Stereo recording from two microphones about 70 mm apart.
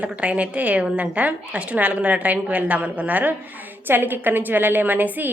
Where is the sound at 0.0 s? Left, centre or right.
Centre.